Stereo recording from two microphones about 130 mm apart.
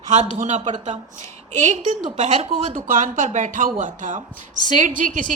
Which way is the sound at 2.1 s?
65° right (ahead or behind).